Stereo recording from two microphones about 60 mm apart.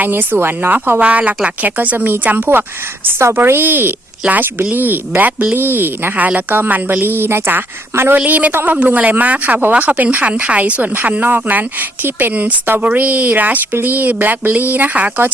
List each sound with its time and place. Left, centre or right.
0.0 s a woman's voice: right
3.2 s a woman's voice: right
8.2 s speech: right